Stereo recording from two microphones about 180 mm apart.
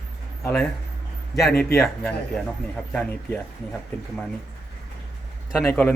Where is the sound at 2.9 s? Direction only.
5° left (ahead or behind).